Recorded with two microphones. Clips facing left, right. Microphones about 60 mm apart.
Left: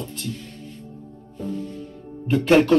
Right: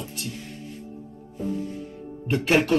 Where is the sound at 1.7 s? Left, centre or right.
Centre.